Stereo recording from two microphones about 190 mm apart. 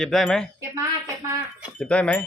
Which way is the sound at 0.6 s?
15° right (ahead or behind).